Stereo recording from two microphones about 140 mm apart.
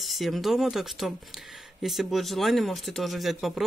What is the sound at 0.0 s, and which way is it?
Speech, centre (ahead or behind).